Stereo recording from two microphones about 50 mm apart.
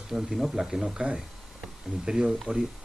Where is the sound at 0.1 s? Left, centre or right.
Centre.